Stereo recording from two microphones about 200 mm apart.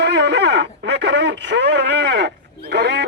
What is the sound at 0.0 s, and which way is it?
Speech, 60° right (ahead or behind).